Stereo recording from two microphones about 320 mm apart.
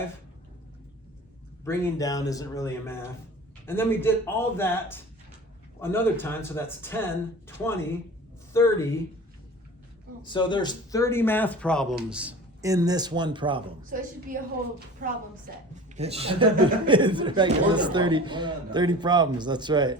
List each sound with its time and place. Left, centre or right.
1.6 s speech: centre
10.2 s speech: centre
13.9 s a woman's voice: right
16.0 s speech: centre